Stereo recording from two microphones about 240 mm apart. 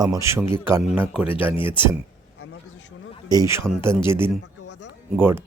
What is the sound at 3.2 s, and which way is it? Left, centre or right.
Speech, centre.